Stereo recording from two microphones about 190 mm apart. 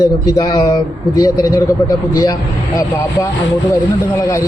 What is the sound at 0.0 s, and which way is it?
Speech, 20° left (ahead or behind).